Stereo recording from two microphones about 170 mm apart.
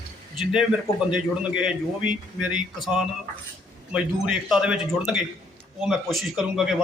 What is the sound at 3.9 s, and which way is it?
A man's voice, 5° right (ahead or behind).